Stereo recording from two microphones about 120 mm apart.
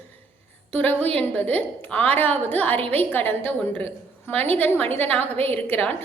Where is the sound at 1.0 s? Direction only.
55° right (ahead or behind).